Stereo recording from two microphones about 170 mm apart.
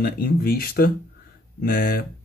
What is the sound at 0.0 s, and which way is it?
Speech, 60° left (ahead or behind).